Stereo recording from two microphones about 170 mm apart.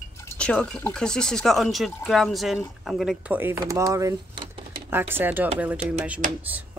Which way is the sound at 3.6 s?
20° right (ahead or behind).